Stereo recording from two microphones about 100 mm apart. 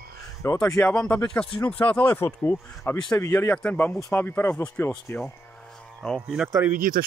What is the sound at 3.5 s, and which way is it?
Speech, 15° left (ahead or behind).